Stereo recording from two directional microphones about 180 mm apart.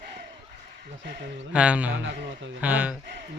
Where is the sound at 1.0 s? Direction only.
75° right (ahead or behind).